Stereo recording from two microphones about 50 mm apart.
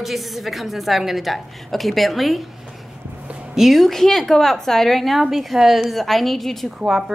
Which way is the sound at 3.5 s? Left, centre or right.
Centre.